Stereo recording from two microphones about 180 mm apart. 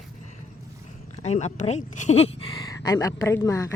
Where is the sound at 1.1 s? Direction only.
40° left (ahead or behind).